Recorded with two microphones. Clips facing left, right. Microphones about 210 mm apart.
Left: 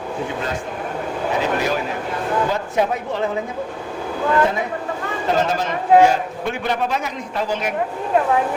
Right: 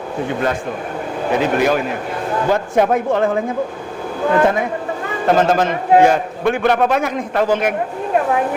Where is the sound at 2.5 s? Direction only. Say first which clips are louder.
Right 5 dB; 50° right (ahead or behind).